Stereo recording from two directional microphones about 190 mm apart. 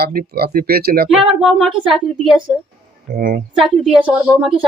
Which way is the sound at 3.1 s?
50° right (ahead or behind).